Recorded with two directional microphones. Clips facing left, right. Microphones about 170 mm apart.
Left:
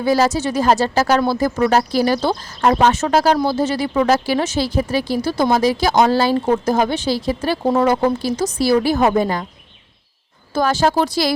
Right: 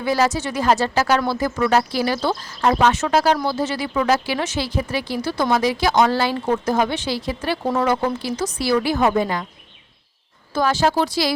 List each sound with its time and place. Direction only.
0.0 s speech: 35° left (ahead or behind)
7.6 s speech: 25° left (ahead or behind)
7.9 s speech: 40° left (ahead or behind)
10.5 s a woman's voice: 45° left (ahead or behind)